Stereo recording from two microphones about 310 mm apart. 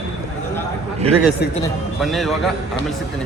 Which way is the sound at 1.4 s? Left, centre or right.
Left.